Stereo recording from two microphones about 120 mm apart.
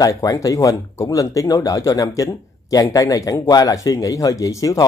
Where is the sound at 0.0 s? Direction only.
30° left (ahead or behind).